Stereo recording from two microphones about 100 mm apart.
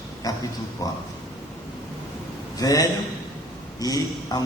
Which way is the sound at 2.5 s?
40° left (ahead or behind).